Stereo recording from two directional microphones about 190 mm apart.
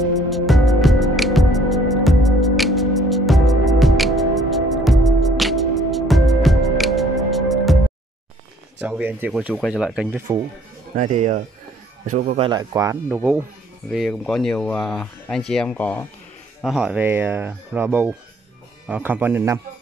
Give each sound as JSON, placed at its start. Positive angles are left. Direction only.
{"t": 0.0, "sound": "music", "side_deg": 0}
{"t": 8.8, "sound": "speech", "side_deg": -10}
{"t": 11.0, "sound": "speech", "side_deg": -40}
{"t": 12.4, "sound": "speech", "side_deg": -25}